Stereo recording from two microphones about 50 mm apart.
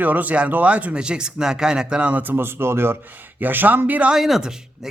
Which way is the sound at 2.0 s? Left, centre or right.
Right.